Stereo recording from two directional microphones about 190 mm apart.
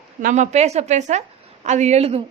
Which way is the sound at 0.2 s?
40° right (ahead or behind).